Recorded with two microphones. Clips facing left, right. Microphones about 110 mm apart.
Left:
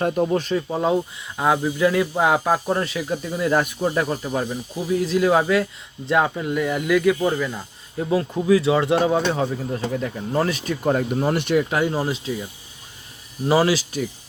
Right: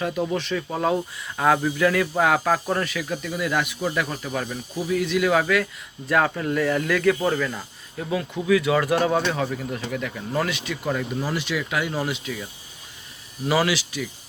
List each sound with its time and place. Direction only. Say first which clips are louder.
0.0 s speech: left 5 dB; 45° left (ahead or behind)
0.5 s speech: left 3 dB; 20° left (ahead or behind)
6.1 s speech: left 1 dB; 15° left (ahead or behind)
7.9 s speech: left 5 dB; 30° left (ahead or behind); by 11.6 s 55° left (ahead or behind)
11.7 s speech: left 4 dB; 35° left (ahead or behind)
13.5 s speech: left 4 dB; 35° left (ahead or behind)